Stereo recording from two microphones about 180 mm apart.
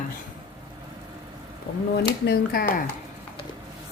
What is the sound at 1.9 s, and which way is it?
Speech, 60° left (ahead or behind).